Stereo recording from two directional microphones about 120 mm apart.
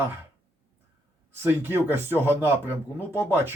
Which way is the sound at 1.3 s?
20° right (ahead or behind).